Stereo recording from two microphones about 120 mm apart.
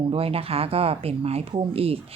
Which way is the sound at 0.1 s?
55° right (ahead or behind).